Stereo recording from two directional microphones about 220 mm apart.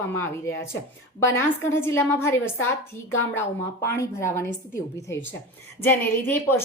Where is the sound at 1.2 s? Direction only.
10° left (ahead or behind).